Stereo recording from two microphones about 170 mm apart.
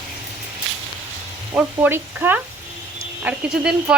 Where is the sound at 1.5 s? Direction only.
10° right (ahead or behind).